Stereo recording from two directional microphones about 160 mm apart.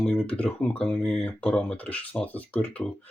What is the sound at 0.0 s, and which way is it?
Speech, 10° left (ahead or behind).